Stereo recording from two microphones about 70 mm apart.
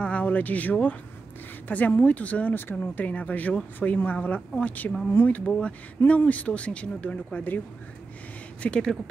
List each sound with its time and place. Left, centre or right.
0.0 s speech: left
8.6 s speech: centre